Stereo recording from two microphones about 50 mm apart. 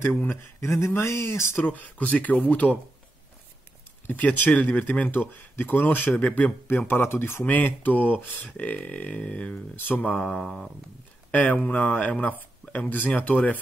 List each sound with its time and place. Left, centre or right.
0.4 s speech: left
1.6 s speech: left
4.1 s speech: left
6.1 s speech: left
6.9 s speech: left
7.4 s speech: left
9.8 s speech: left
10.4 s a sound: centre
11.3 s speech: left